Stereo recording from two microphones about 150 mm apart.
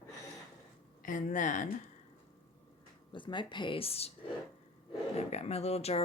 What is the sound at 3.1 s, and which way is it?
Speech, 30° left (ahead or behind).